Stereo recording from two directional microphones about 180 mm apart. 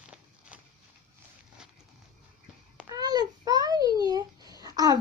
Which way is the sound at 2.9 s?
20° right (ahead or behind).